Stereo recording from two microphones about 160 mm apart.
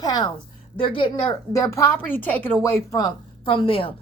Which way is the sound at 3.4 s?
30° left (ahead or behind).